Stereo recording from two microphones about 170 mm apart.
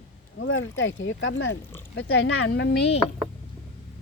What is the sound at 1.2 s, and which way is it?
Speech, 90° left.